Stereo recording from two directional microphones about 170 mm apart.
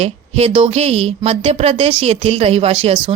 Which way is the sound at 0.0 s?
35° right (ahead or behind).